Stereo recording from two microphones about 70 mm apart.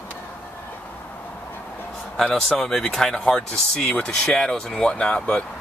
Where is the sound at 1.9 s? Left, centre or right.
Centre.